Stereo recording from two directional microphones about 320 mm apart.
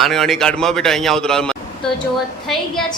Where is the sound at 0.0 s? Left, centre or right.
Centre.